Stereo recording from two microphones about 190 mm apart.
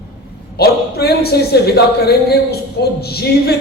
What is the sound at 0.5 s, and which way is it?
A man's voice, 55° left (ahead or behind).